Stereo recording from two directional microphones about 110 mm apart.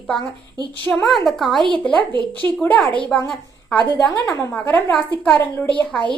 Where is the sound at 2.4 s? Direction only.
15° left (ahead or behind).